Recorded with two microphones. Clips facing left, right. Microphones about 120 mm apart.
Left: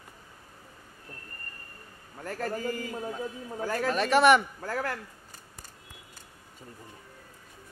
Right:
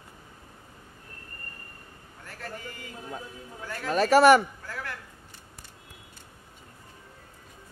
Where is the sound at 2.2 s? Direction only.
40° left (ahead or behind).